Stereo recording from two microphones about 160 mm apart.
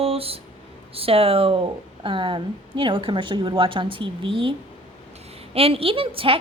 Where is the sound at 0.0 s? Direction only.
35° right (ahead or behind).